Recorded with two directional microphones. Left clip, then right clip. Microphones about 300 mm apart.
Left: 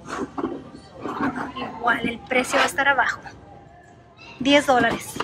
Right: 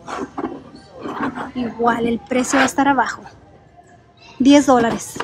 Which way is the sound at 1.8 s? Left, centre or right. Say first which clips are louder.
Right 4 dB; centre.